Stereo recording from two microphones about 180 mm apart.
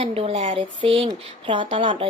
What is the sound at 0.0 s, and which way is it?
Speech, 30° right (ahead or behind).